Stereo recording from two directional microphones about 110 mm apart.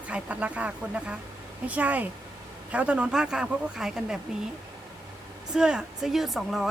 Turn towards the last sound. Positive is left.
turn(degrees=0)  # may be behind; listen again after turning